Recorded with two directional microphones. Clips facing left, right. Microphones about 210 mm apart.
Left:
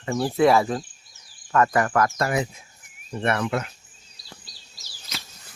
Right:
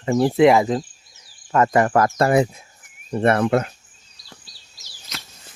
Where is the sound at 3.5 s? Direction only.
45° right (ahead or behind).